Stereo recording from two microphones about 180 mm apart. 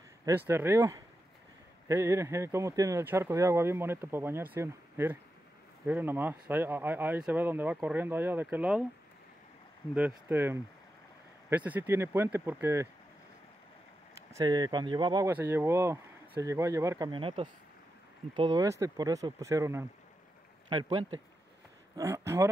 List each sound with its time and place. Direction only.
0.5 s speech: 15° right (ahead or behind)
9.9 s speech: 10° right (ahead or behind)
14.3 s speech: 20° right (ahead or behind)
15.3 s speech: 15° right (ahead or behind)
21.9 s speech: 15° right (ahead or behind)